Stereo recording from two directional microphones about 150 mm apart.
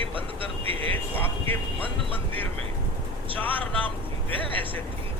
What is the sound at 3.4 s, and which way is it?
Speech, 10° left (ahead or behind).